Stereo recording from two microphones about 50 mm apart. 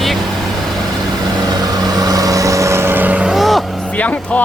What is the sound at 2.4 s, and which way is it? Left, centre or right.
Vehicle, right.